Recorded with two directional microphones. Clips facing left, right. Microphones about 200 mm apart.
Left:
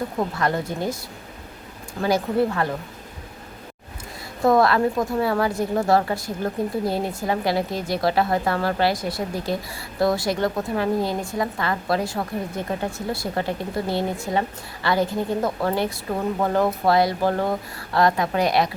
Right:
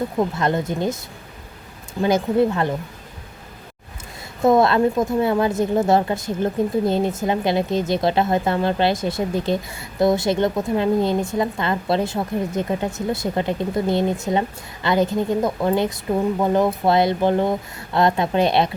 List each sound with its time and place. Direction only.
0.2 s a woman's voice: 20° right (ahead or behind)
2.0 s a woman's voice: 20° right (ahead or behind)
4.4 s a woman's voice: 20° right (ahead or behind)